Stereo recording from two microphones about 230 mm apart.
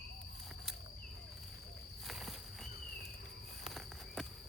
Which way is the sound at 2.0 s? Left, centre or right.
Centre.